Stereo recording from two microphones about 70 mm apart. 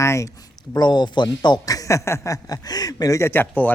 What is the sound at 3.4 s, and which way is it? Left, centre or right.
Speech, left.